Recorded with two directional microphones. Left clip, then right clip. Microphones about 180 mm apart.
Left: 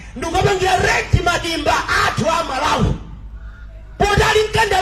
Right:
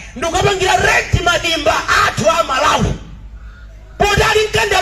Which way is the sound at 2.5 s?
15° left (ahead or behind).